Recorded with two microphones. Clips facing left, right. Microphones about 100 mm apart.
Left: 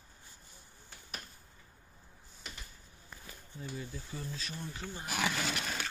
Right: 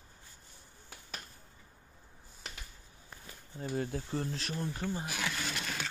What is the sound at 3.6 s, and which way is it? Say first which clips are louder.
Speech: right 8 dB; 50° right (ahead or behind).